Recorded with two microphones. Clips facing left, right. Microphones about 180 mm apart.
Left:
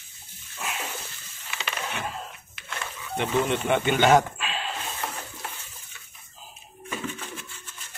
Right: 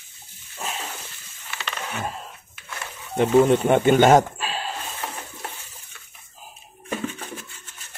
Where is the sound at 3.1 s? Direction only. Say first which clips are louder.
Right 9 dB; 40° right (ahead or behind).